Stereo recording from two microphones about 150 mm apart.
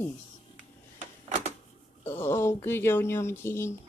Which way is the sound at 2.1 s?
15° left (ahead or behind).